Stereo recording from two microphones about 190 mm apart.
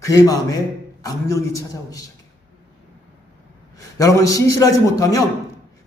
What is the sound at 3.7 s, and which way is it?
A man's voice, 15° left (ahead or behind).